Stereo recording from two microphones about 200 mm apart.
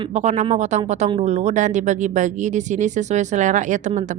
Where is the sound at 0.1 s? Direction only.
35° right (ahead or behind).